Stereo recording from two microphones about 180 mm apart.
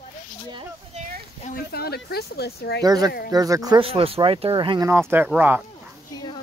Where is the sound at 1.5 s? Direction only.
60° left (ahead or behind).